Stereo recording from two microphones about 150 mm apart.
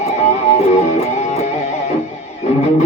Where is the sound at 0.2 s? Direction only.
45° left (ahead or behind).